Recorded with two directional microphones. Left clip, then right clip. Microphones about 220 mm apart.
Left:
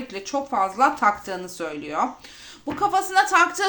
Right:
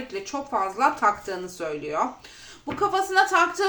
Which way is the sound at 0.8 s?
40° left (ahead or behind).